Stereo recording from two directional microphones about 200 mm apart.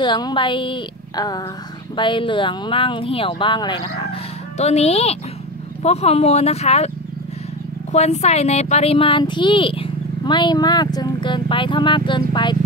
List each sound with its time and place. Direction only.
0.0 s speech: 20° left (ahead or behind)
7.9 s speech: 35° left (ahead or behind)